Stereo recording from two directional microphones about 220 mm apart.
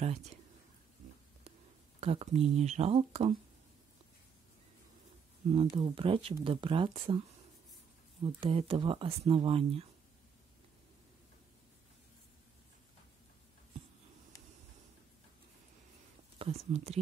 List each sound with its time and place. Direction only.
2.0 s speech: 25° right (ahead or behind)
5.5 s speech: 20° right (ahead or behind)
16.3 s speech: 30° right (ahead or behind)